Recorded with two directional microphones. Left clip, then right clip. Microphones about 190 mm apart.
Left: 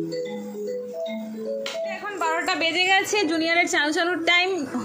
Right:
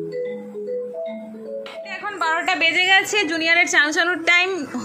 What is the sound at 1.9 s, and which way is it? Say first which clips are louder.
A woman's voice: right 6 dB; 5° left (ahead or behind).